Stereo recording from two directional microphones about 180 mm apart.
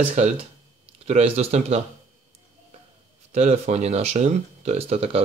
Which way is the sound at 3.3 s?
40° right (ahead or behind).